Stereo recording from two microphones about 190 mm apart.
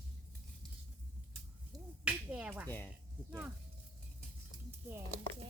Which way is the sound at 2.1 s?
5° right (ahead or behind).